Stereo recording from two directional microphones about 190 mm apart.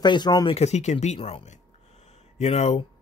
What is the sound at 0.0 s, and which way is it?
Speech, 25° left (ahead or behind).